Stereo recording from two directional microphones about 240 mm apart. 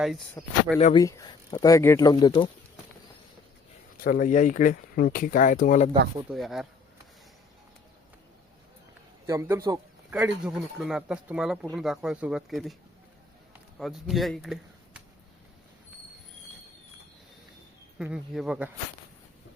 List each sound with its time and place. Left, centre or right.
0.0 s speech: centre
0.9 s speech: centre
3.9 s speech: left
6.3 s speech: centre
9.2 s a man's voice: centre
13.7 s speech: centre
17.9 s speech: centre